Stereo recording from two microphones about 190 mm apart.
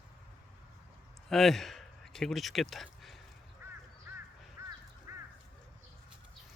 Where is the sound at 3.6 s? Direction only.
15° right (ahead or behind).